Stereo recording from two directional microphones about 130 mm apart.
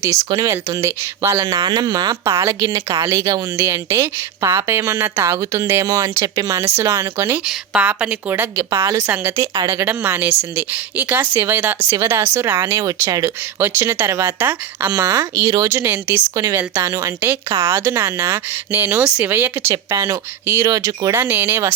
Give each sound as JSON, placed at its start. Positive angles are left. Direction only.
{"t": 0.0, "sound": "a woman's voice", "side_deg": -25}
{"t": 7.4, "sound": "a woman's voice", "side_deg": -10}